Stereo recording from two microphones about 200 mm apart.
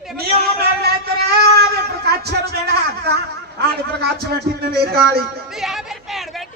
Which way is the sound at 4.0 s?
50° right (ahead or behind).